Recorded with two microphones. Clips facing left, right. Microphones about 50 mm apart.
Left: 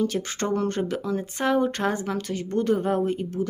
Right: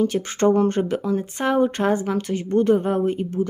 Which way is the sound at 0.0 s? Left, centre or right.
Centre.